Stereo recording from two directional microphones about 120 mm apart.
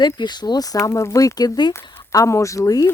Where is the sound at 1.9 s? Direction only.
25° left (ahead or behind).